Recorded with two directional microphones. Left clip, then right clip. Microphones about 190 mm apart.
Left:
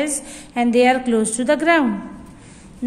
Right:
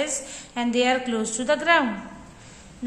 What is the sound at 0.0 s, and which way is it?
A woman's voice, 50° left (ahead or behind).